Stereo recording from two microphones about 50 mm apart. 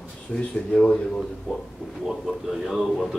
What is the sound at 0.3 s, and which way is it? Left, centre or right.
Speech, left.